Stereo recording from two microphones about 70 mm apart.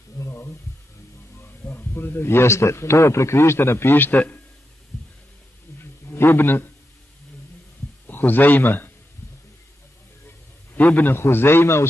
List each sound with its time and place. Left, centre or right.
0.2 s a sound: left
1.7 s a man's voice: left
6.1 s a man's voice: left
8.1 s a man's voice: left
10.8 s a man's voice: left